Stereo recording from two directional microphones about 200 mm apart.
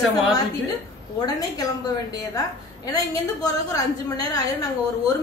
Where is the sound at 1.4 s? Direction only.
20° left (ahead or behind).